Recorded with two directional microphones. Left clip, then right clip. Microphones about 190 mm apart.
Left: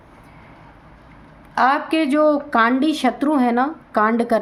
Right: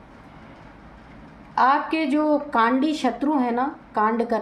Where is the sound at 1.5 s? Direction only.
40° left (ahead or behind).